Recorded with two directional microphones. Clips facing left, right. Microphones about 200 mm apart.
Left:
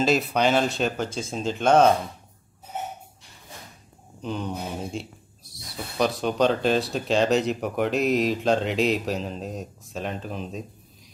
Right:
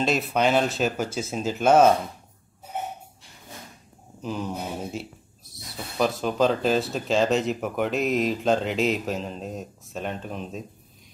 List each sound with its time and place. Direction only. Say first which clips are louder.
0.0 s speech: left 1 dB; centre (ahead or behind)
4.2 s speech: even; 5° right (ahead or behind)